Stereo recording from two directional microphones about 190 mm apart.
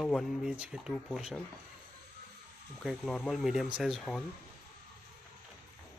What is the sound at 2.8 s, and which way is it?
Speech, centre (ahead or behind).